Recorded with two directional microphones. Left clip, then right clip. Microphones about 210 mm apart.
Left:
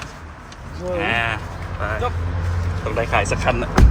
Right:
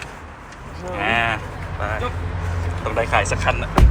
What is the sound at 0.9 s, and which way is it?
Speech, 5° left (ahead or behind).